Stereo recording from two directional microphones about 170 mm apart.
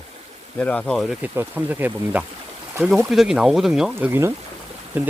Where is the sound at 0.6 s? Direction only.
5° left (ahead or behind).